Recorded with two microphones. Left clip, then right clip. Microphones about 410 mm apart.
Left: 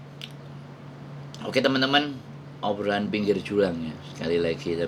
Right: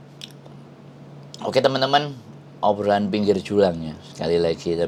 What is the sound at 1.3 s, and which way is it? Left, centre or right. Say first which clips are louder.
A man's voice: right 4 dB; right.